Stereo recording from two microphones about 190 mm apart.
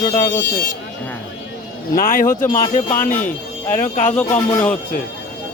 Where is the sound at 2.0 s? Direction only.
50° left (ahead or behind).